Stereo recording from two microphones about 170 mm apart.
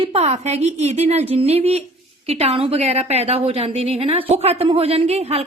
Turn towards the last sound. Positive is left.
turn(degrees=-40)  # may be behind; listen again after turning